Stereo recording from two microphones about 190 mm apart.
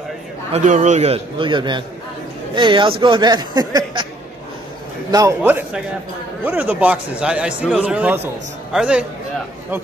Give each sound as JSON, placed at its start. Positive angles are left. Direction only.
{"t": 0.5, "sound": "a man's voice", "side_deg": -40}
{"t": 5.1, "sound": "a man's voice", "side_deg": -15}